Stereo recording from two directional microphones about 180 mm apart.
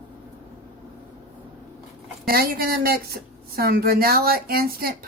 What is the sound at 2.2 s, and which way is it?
Speech, 55° right (ahead or behind).